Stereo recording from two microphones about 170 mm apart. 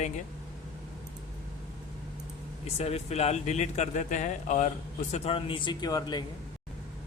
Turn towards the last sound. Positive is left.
turn(degrees=25)  # may be behind; listen again after turning